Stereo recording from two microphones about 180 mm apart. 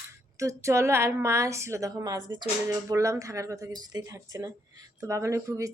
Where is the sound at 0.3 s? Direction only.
15° right (ahead or behind).